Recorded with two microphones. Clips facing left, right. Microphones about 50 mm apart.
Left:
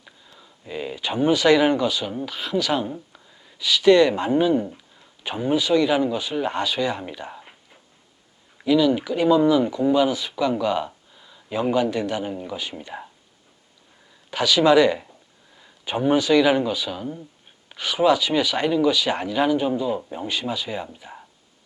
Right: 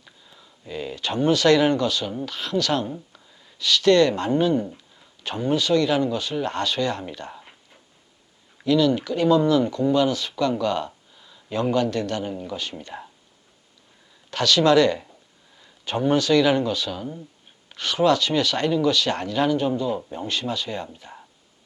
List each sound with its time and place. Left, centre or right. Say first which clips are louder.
0.0 s speech: left 2 dB; centre
14.3 s speech: left 1 dB; centre